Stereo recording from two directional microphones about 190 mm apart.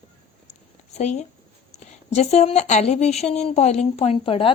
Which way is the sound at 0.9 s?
35° left (ahead or behind).